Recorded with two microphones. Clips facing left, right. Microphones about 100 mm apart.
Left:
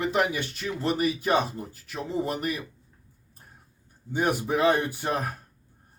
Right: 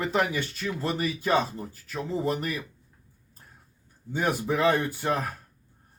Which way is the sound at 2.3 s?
20° left (ahead or behind).